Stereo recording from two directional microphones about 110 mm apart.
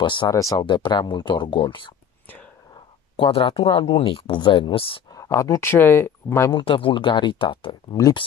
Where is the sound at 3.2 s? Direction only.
60° left (ahead or behind).